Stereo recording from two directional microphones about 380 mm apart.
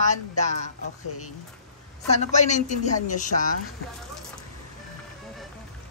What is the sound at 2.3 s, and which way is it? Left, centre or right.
A woman's voice, centre.